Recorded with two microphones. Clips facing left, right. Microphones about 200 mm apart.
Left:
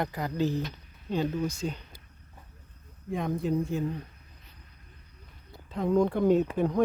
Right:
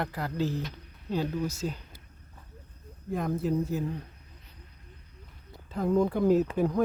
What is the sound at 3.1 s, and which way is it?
Speech, centre (ahead or behind).